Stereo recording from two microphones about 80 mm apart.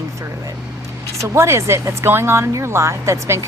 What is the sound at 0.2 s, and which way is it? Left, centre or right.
Vehicle, right.